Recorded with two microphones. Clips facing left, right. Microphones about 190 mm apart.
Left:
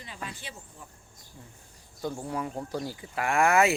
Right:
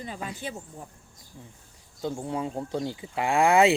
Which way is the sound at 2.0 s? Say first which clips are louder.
Right 2 dB; 20° right (ahead or behind).